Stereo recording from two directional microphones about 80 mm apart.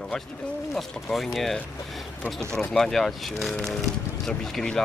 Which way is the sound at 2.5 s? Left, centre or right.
Centre.